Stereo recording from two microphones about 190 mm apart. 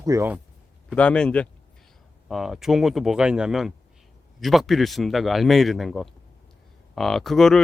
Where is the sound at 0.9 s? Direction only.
5° left (ahead or behind).